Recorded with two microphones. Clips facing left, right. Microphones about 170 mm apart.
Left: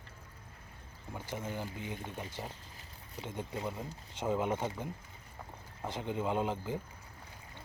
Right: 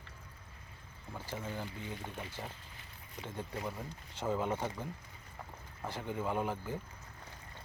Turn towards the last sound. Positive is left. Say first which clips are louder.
# left 2 dB
turn(degrees=20)  # may be behind; listen again after turning